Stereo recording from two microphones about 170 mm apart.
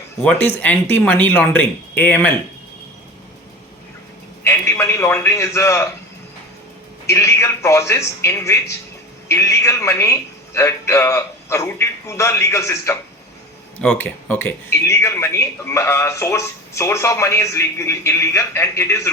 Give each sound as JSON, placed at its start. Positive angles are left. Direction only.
{"t": 0.2, "sound": "speech", "side_deg": 10}
{"t": 4.4, "sound": "a sound", "side_deg": 15}
{"t": 7.1, "sound": "speech", "side_deg": 15}